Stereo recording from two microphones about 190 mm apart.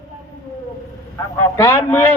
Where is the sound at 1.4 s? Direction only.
15° left (ahead or behind).